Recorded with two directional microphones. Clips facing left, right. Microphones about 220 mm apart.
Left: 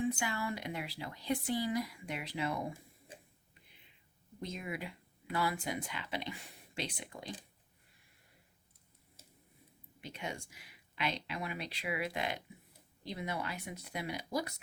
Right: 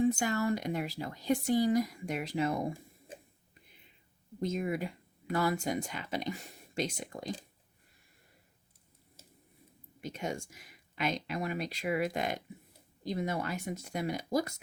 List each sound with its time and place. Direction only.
0.0 s speech: 45° right (ahead or behind)
4.4 s speech: 45° right (ahead or behind)
10.0 s speech: 45° right (ahead or behind)